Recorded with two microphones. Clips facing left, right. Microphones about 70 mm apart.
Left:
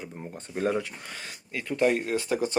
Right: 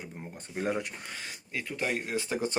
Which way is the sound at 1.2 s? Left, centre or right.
Centre.